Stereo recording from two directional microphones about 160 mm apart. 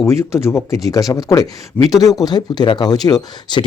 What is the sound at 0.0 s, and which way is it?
Speech, 20° left (ahead or behind).